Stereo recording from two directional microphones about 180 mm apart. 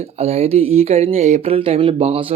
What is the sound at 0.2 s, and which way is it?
Speech, 35° right (ahead or behind).